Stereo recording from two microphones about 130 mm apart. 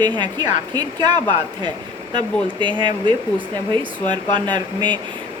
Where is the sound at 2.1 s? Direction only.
40° right (ahead or behind).